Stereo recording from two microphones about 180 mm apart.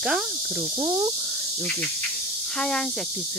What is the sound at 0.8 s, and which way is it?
Speech, 20° right (ahead or behind).